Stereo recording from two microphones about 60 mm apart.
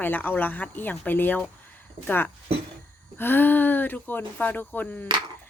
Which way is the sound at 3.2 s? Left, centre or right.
Left.